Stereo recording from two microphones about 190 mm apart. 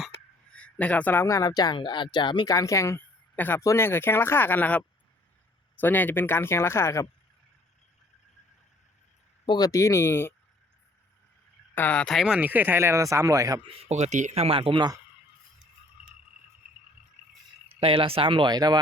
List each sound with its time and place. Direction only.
0.5 s speech: 5° left (ahead or behind)
9.5 s speech: 20° left (ahead or behind)
11.7 s speech: 10° left (ahead or behind); by 13.7 s 20° right (ahead or behind)
13.8 s speech: 35° right (ahead or behind)
17.7 s speech: 30° right (ahead or behind)